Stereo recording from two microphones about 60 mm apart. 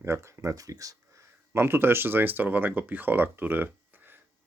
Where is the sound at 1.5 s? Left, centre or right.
Right.